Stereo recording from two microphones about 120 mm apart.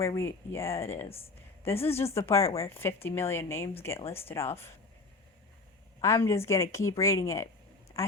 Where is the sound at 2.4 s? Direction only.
60° left (ahead or behind).